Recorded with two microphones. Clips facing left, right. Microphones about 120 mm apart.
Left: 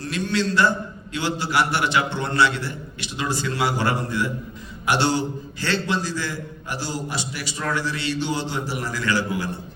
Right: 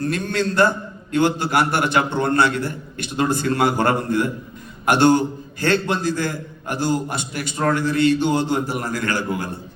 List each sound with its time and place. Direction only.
0.0 s a man's voice: 50° right (ahead or behind)